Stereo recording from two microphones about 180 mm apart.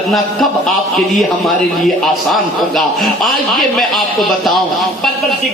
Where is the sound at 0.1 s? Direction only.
Centre (ahead or behind).